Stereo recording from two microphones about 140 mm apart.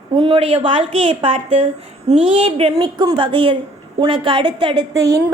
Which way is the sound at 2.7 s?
30° right (ahead or behind).